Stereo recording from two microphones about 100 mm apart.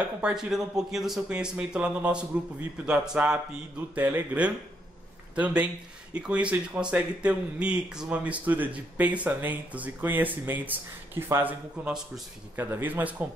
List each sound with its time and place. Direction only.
0.2 s speech: 5° right (ahead or behind)